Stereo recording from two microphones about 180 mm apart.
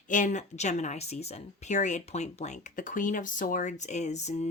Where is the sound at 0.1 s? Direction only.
45° left (ahead or behind).